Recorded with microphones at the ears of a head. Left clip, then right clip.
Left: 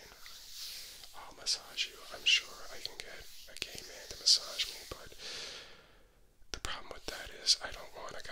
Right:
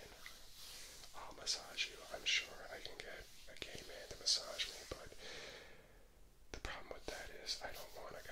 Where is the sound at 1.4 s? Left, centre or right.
Left.